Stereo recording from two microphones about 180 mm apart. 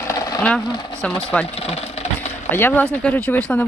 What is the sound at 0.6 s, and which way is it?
Speech, 25° left (ahead or behind).